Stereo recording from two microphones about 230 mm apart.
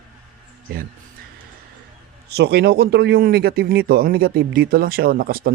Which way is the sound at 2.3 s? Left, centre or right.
Right.